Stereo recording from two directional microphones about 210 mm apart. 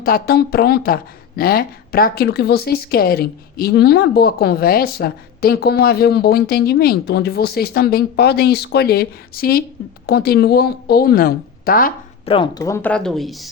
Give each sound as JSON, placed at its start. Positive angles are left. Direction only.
{"t": 0.0, "sound": "speech", "side_deg": 45}
{"t": 12.2, "sound": "speech", "side_deg": 25}